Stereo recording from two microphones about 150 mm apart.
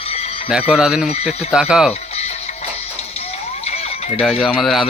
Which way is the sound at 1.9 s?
45° left (ahead or behind).